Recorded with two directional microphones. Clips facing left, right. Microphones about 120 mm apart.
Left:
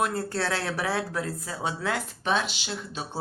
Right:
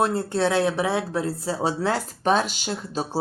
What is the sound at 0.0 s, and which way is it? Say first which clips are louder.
Speech: right 6 dB; 25° right (ahead or behind).